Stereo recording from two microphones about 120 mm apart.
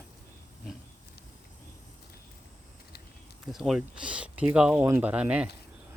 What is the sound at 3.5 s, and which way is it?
Speech, 5° right (ahead or behind).